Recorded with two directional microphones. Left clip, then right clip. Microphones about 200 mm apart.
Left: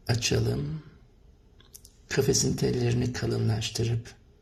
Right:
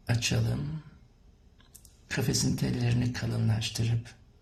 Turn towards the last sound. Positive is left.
turn(degrees=20)  # may be behind; listen again after turning